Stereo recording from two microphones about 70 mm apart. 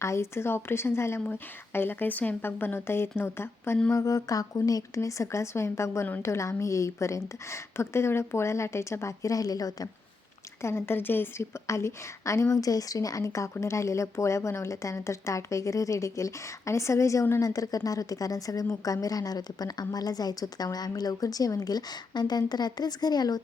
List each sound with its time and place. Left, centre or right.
0.0 s a woman's voice: left
1.2 s a woman's voice: left
3.9 s a woman's voice: left
10.6 s a woman's voice: left
11.7 s a woman's voice: left
17.4 s a woman's voice: left